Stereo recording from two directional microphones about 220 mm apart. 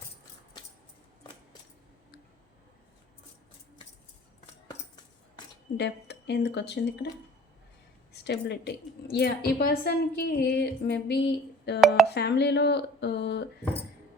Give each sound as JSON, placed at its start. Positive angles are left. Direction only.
{"t": 5.7, "sound": "a woman's voice", "side_deg": 50}
{"t": 8.1, "sound": "a woman's voice", "side_deg": 50}